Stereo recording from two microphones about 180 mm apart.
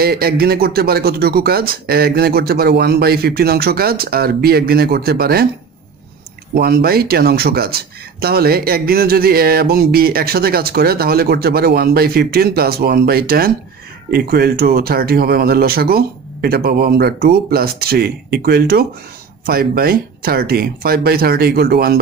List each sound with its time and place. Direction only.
0.0 s speech: 60° right (ahead or behind)
6.5 s speech: 60° right (ahead or behind)